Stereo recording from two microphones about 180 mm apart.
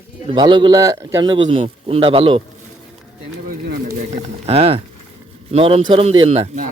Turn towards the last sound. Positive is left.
turn(degrees=-30)  # may be behind; listen again after turning